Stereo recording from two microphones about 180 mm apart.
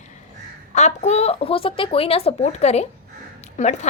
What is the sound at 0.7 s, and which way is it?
A woman's voice, 40° left (ahead or behind).